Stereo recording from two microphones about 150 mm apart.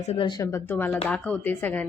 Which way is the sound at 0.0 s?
45° left (ahead or behind).